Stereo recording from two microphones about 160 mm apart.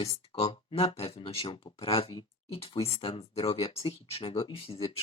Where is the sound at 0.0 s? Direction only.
40° left (ahead or behind).